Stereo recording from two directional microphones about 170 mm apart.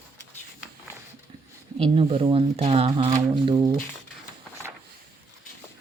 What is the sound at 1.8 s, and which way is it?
Speech, 30° right (ahead or behind).